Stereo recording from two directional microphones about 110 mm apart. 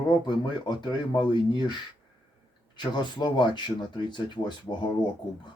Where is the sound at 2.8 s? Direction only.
45° left (ahead or behind).